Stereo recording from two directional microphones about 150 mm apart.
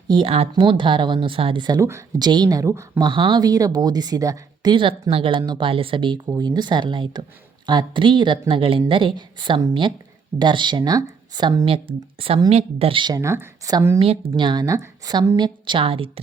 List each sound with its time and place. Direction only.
0.1 s a woman's voice: 35° right (ahead or behind); by 3.0 s 20° right (ahead or behind)
3.0 s a woman's voice: 35° right (ahead or behind)
14.0 s a woman's voice: 35° right (ahead or behind)